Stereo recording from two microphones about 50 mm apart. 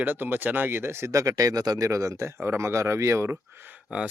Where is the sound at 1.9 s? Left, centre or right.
Right.